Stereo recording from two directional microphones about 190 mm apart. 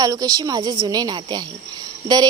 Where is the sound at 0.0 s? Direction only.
20° right (ahead or behind).